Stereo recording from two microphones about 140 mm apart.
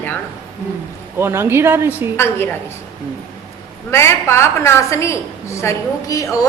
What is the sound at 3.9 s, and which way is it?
A woman's voice, 20° left (ahead or behind).